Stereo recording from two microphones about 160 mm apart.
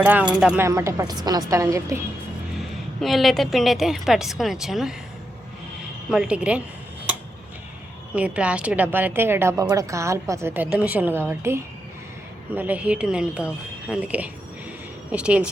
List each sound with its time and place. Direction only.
0.0 s a woman's voice: 10° right (ahead or behind)
0.6 s a woman's voice: 15° right (ahead or behind)
3.0 s a woman's voice: centre (ahead or behind)
6.1 s a woman's voice: 5° right (ahead or behind)
8.1 s a woman's voice: 10° right (ahead or behind)